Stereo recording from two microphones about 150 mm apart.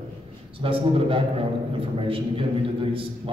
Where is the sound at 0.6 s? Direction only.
35° right (ahead or behind).